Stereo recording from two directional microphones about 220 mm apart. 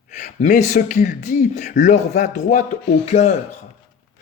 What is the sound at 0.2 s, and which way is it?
Speech, 35° left (ahead or behind).